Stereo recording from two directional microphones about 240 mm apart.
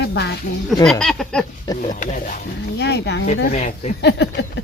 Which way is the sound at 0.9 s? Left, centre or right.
Centre.